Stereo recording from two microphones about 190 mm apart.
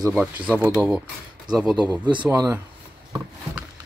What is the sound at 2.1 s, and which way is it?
Speech, 20° right (ahead or behind).